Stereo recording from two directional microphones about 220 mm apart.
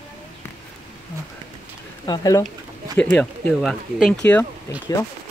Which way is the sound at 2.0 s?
15° left (ahead or behind).